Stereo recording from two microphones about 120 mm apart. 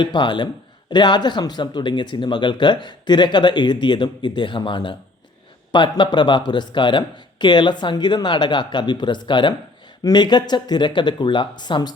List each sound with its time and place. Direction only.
0.0 s speech: 40° left (ahead or behind)